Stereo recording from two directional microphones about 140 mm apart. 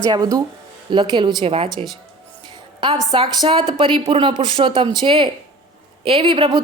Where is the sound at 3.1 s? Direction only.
30° right (ahead or behind).